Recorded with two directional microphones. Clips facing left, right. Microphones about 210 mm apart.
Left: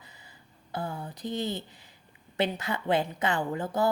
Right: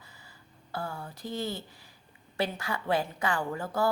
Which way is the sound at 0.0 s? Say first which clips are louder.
Left 1 dB; 20° left (ahead or behind).